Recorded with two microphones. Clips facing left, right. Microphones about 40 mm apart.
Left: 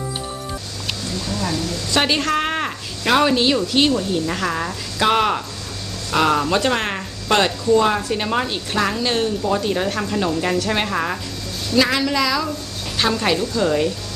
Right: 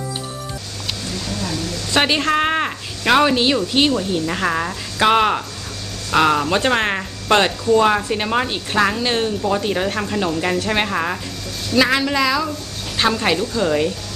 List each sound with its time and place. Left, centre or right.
2.0 s speech: centre
6.6 s speech: centre